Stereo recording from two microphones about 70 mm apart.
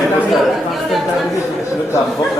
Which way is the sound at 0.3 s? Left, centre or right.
Centre.